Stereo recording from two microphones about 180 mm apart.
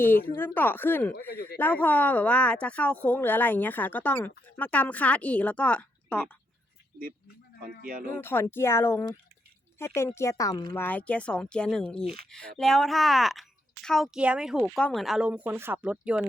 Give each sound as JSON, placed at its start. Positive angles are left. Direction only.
{"t": 0.3, "sound": "speech", "side_deg": 10}
{"t": 1.3, "sound": "speech", "side_deg": 60}
{"t": 1.5, "sound": "speech", "side_deg": 10}
{"t": 7.8, "sound": "speech", "side_deg": -55}
{"t": 8.2, "sound": "speech", "side_deg": 10}